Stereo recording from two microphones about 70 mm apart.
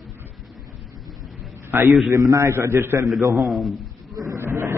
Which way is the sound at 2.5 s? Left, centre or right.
Right.